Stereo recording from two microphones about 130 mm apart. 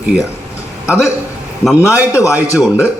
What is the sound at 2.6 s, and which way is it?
Speech, 10° right (ahead or behind).